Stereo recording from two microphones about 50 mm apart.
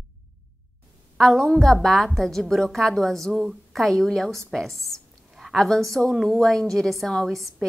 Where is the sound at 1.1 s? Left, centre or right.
Centre.